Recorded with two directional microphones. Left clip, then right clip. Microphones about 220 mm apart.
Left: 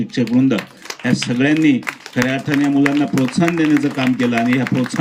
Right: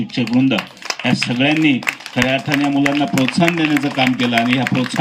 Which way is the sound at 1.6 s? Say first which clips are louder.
Even; 20° left (ahead or behind).